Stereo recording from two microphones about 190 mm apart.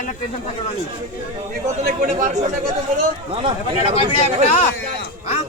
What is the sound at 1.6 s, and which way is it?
Speech, 45° right (ahead or behind).